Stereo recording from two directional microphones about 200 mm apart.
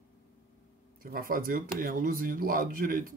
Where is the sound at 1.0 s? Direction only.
45° right (ahead or behind).